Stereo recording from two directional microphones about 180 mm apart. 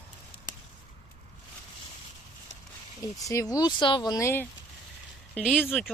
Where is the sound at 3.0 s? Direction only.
20° left (ahead or behind).